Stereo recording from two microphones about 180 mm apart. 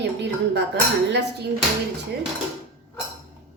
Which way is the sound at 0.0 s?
70° right (ahead or behind).